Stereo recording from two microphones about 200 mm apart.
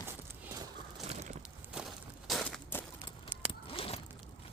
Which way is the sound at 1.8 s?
5° right (ahead or behind).